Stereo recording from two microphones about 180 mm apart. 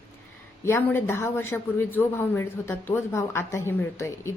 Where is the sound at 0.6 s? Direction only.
10° left (ahead or behind).